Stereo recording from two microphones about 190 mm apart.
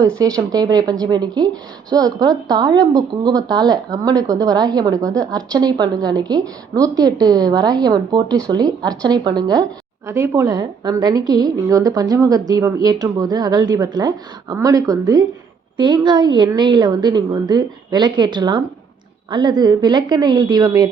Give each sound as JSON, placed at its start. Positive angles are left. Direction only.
{"t": 0.2, "sound": "a woman's voice", "side_deg": -20}